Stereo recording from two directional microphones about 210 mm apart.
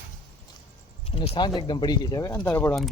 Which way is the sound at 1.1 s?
25° left (ahead or behind).